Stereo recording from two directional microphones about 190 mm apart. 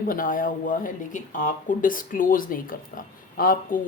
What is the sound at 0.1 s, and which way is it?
Speech, 45° left (ahead or behind).